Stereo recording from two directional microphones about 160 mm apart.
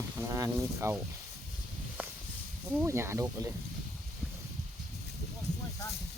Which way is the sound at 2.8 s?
15° right (ahead or behind).